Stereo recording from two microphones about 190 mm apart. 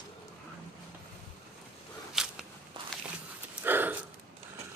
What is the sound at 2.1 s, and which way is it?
Walk, centre (ahead or behind).